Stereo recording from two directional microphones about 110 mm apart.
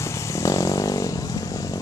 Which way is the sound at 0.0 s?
25° left (ahead or behind).